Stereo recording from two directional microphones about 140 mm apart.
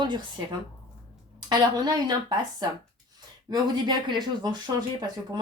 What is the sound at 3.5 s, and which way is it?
Speech, 30° right (ahead or behind).